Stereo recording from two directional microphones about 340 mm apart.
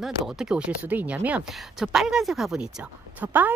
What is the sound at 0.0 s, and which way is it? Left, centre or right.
Speech, centre.